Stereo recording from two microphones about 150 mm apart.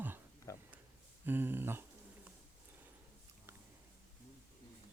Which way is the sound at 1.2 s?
15° right (ahead or behind).